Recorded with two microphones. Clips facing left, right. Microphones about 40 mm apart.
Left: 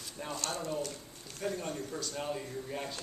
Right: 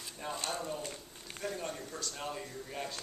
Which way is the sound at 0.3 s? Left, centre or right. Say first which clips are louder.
Even; right.